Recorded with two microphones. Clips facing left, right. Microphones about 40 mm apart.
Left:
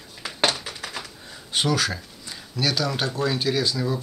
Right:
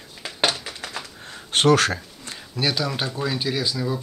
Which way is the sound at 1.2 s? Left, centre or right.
Right.